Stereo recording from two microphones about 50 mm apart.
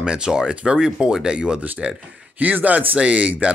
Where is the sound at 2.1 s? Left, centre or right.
Right.